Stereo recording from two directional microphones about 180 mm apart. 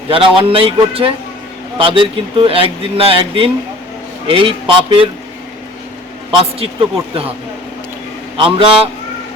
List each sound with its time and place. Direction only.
0.1 s a man's voice: 30° right (ahead or behind)
6.4 s speech: 30° right (ahead or behind)
8.4 s a man's voice: 30° right (ahead or behind)